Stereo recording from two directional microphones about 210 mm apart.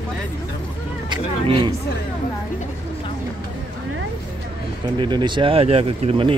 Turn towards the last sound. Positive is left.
turn(degrees=-25)  # may be behind; listen again after turning